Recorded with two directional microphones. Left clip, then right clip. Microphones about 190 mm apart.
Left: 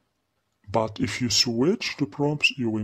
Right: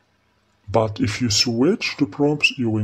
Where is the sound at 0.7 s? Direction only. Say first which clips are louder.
Right 5 dB; 15° left (ahead or behind).